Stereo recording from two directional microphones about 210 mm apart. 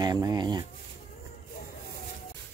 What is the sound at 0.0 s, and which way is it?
Speech, 20° right (ahead or behind).